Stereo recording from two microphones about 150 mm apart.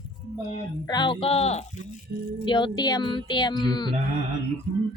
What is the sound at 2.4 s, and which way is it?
Speech, 30° left (ahead or behind).